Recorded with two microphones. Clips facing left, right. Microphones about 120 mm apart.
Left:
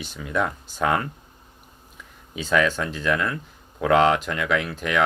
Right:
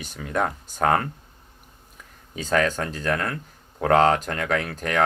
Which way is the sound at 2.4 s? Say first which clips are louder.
Left 1 dB; 45° right (ahead or behind).